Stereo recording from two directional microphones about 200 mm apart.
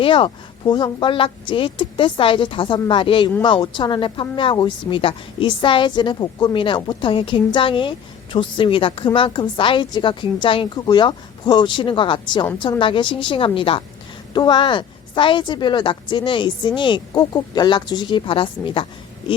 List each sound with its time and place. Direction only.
0.0 s speech: 25° left (ahead or behind)